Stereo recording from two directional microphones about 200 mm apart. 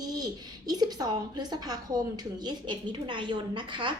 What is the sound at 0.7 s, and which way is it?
A woman's voice, 20° right (ahead or behind).